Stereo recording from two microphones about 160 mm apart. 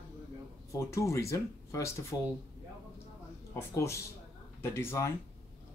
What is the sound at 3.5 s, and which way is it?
Speech, 15° left (ahead or behind).